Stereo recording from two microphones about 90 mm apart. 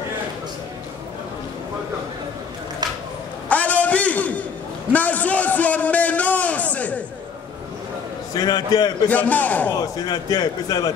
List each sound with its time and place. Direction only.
3.4 s a sound: 15° left (ahead or behind)
8.4 s speech: 50° left (ahead or behind)
9.1 s a man's voice: 15° left (ahead or behind)
9.7 s speech: 45° left (ahead or behind)